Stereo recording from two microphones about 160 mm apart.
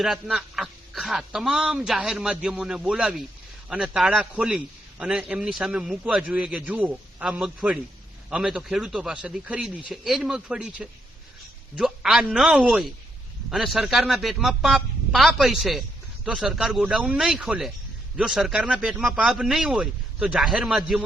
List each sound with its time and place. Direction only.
0.0 s a man's voice: 5° right (ahead or behind)